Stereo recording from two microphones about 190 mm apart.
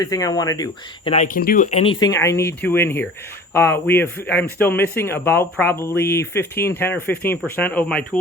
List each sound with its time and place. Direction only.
0.0 s speech: 20° left (ahead or behind)
1.1 s speech: 40° left (ahead or behind)
1.7 s speech: 30° left (ahead or behind)
2.0 s speech: 15° left (ahead or behind)